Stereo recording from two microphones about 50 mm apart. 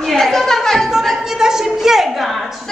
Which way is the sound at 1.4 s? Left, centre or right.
Centre.